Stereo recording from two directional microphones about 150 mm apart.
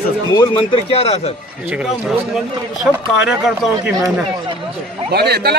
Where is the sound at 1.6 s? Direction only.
5° right (ahead or behind).